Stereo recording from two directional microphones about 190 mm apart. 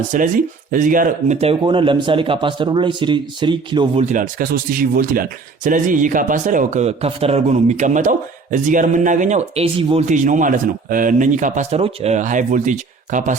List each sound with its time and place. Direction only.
0.1 s speech: 45° right (ahead or behind); by 4.0 s 25° right (ahead or behind)
4.1 s speech: 45° right (ahead or behind); by 10.2 s 30° right (ahead or behind)
10.2 s a man's voice: 45° right (ahead or behind)